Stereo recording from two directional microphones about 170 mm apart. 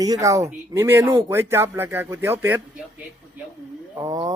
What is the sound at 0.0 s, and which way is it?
Speech, 20° right (ahead or behind).